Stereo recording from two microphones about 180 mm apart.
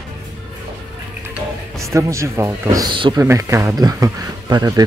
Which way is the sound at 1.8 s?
15° right (ahead or behind).